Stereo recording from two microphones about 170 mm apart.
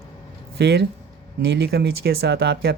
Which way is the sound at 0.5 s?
80° right.